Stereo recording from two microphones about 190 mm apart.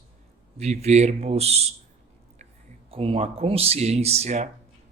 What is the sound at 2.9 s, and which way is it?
Speech, 30° right (ahead or behind).